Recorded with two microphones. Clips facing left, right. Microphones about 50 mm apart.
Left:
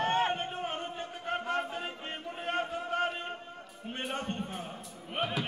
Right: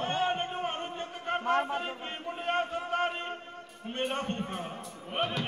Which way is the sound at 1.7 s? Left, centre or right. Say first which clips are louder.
Right 3 dB; right.